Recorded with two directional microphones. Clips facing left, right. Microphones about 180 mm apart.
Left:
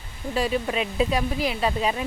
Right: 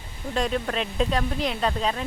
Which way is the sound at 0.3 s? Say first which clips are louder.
Left 1 dB; 5° left (ahead or behind).